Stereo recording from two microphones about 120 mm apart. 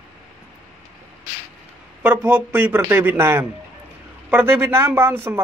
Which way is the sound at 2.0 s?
15° right (ahead or behind).